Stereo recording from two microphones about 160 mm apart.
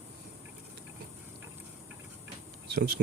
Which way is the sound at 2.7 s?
70° right (ahead or behind).